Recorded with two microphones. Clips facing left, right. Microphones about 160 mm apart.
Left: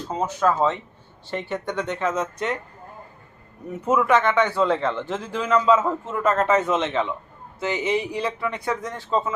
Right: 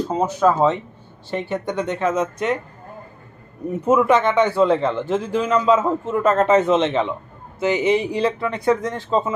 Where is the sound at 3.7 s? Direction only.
20° right (ahead or behind).